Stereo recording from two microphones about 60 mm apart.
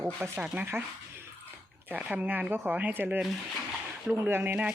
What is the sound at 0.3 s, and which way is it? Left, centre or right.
Speech, centre.